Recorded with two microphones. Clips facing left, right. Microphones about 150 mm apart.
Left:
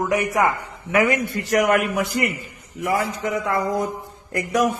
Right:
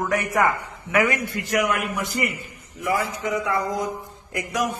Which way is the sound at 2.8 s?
70° left (ahead or behind).